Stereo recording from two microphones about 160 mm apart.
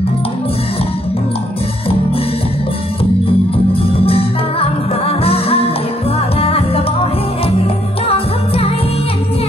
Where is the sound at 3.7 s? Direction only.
35° left (ahead or behind).